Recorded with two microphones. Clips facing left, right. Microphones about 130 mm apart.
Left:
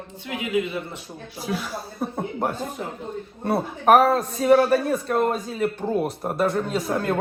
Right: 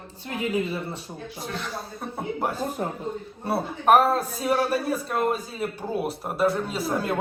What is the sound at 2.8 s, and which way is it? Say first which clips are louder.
Speech: right 3 dB; 40° right (ahead or behind).